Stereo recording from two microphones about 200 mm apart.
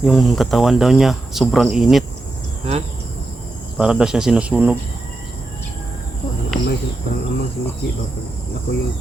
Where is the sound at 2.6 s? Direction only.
30° right (ahead or behind).